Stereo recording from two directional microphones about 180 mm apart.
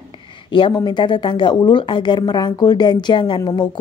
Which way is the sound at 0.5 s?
30° left (ahead or behind).